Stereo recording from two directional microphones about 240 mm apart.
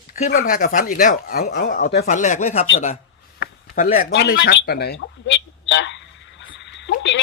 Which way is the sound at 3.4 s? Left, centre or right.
Left.